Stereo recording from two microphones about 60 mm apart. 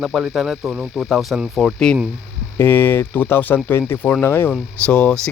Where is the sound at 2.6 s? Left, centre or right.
Left.